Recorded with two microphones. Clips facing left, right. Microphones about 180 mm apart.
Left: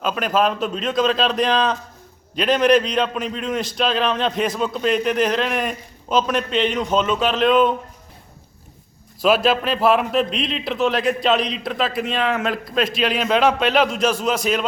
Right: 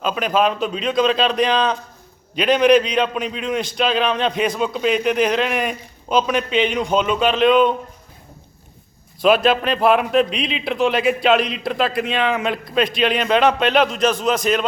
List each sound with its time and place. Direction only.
0.0 s a man's voice: centre (ahead or behind)
9.2 s a man's voice: 5° left (ahead or behind)